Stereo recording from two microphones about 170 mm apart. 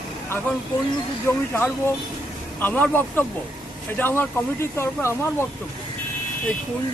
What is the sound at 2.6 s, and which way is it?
Speech, 10° left (ahead or behind).